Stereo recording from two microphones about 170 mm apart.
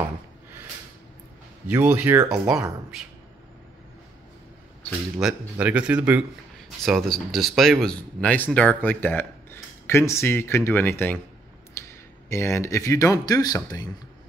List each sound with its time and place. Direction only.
1.7 s speech: 10° right (ahead or behind)
5.2 s speech: 5° right (ahead or behind); by 11.1 s 10° left (ahead or behind)
11.8 s a sound: 15° left (ahead or behind)
12.3 s speech: 15° left (ahead or behind)